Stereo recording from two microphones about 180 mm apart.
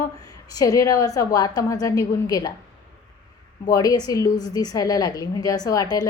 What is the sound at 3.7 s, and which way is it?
A woman's voice, 20° left (ahead or behind).